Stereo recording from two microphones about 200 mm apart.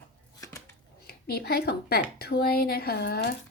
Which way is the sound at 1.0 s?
50° left (ahead or behind).